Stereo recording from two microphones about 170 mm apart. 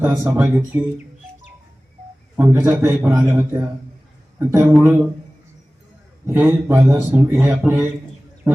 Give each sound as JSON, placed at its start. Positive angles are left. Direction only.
{"t": 0.0, "sound": "speech", "side_deg": -15}
{"t": 2.4, "sound": "speech", "side_deg": -15}
{"t": 6.2, "sound": "speech", "side_deg": -15}
{"t": 8.4, "sound": "a sound", "side_deg": -15}